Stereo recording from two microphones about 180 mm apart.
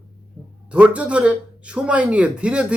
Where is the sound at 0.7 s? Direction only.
5° right (ahead or behind).